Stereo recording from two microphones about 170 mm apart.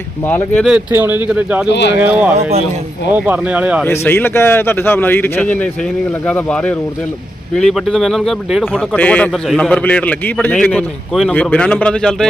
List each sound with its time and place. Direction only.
0.3 s speech: 10° left (ahead or behind)
0.6 s speech: 5° right (ahead or behind)
1.6 s speech: 90° left
2.0 s speech: 10° right (ahead or behind)
3.8 s speech: 15° left (ahead or behind)